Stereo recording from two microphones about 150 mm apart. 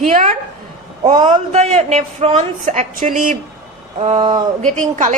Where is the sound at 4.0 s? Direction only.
40° right (ahead or behind).